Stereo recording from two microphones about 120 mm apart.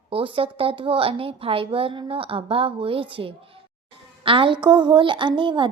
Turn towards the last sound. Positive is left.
turn(degrees=-45)  # may be behind; listen again after turning